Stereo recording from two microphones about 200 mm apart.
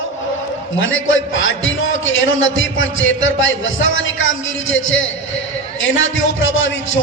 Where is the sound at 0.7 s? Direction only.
75° left (ahead or behind).